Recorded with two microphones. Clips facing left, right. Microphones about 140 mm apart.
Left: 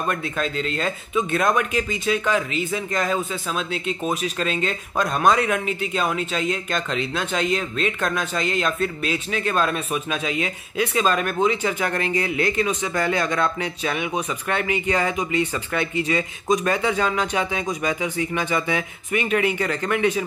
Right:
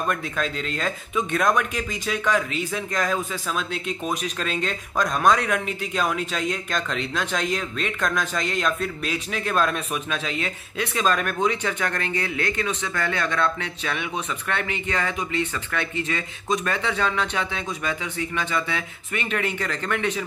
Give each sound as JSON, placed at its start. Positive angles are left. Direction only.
{"t": 0.1, "sound": "speech", "side_deg": 0}